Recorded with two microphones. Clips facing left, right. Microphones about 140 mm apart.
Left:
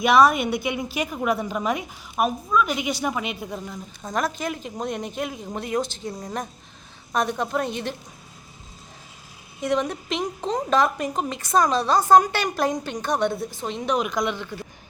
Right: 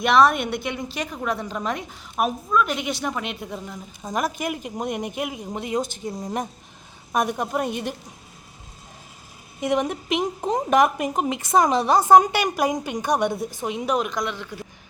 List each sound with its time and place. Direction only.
0.0 s a woman's voice: 5° left (ahead or behind)
4.0 s a woman's voice: 10° right (ahead or behind)
9.6 s a woman's voice: 20° right (ahead or behind); by 14.5 s centre (ahead or behind)